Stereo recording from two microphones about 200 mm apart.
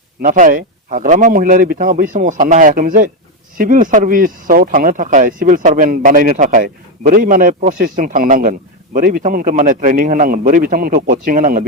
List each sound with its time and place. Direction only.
0.2 s speech: 40° right (ahead or behind)